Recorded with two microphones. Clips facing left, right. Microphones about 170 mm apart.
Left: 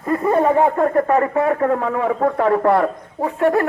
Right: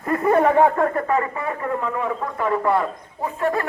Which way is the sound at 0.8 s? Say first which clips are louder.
Left 5 dB; 40° left (ahead or behind).